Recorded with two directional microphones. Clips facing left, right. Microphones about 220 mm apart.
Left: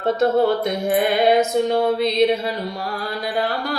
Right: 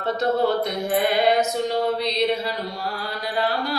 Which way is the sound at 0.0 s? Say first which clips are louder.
Left 4 dB; 50° left (ahead or behind).